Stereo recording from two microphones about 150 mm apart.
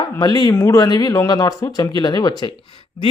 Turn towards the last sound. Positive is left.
turn(degrees=35)  # may be behind; listen again after turning